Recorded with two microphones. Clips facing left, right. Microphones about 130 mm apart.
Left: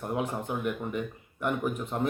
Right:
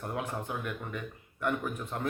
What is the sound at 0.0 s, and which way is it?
Speech, 15° left (ahead or behind).